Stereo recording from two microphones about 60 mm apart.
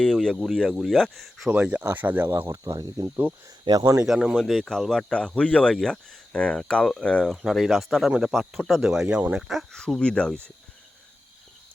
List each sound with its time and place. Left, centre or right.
0.0 s speech: centre
1.5 s speech: right
2.5 s speech: right
3.2 s speech: right
3.7 s speech: right
4.0 s speech: centre
4.4 s speech: centre
5.0 s speech: centre
5.7 s speech: centre
7.4 s speech: centre
8.3 s speech: centre
8.8 s speech: centre
9.5 s speech: centre
9.8 s speech: centre